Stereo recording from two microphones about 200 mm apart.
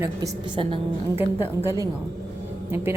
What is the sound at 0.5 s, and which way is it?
Speech, 25° right (ahead or behind).